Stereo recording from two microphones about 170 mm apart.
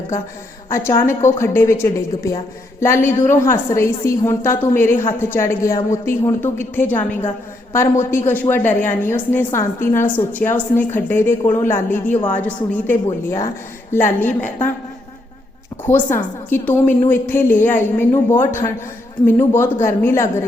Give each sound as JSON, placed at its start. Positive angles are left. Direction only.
{"t": 0.7, "sound": "a woman's voice", "side_deg": 15}
{"t": 15.9, "sound": "a woman's voice", "side_deg": 15}